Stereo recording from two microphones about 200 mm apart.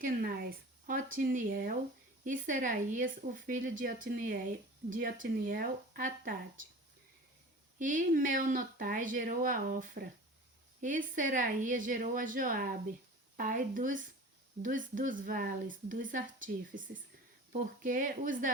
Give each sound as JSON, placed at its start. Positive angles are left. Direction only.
{"t": 0.0, "sound": "speech", "side_deg": -45}
{"t": 7.8, "sound": "speech", "side_deg": -40}